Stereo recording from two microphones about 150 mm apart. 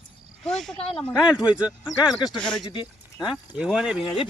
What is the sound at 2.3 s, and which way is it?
Speech, 5° left (ahead or behind).